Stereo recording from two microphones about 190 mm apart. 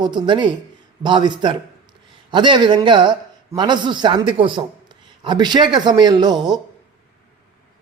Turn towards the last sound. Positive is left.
turn(degrees=-20)  # may be behind; listen again after turning